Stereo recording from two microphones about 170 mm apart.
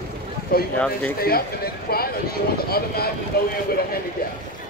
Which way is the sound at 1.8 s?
65° left (ahead or behind).